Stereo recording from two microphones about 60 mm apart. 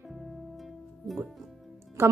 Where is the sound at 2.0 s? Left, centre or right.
Right.